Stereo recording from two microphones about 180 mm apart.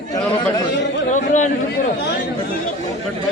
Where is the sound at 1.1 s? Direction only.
45° left (ahead or behind).